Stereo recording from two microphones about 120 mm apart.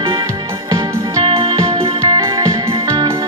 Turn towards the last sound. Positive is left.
turn(degrees=-25)  # may be behind; listen again after turning